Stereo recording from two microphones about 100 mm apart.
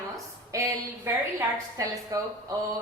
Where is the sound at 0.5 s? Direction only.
30° right (ahead or behind).